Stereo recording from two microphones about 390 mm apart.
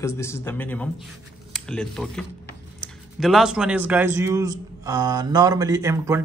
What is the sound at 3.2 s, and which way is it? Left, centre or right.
A man's voice, centre.